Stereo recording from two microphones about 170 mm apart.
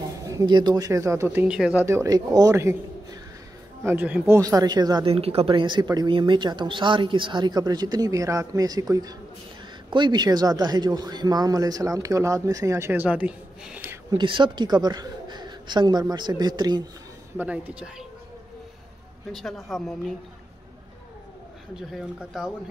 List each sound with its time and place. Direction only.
0.3 s speech: 20° right (ahead or behind)
4.4 s speech: 20° right (ahead or behind)
5.1 s speech: 35° right (ahead or behind); by 13.9 s 10° right (ahead or behind)
14.1 s a woman's voice: 30° right (ahead or behind)
17.4 s speech: 10° right (ahead or behind)
19.3 s a woman's voice: centre (ahead or behind)
21.7 s a woman's voice: centre (ahead or behind)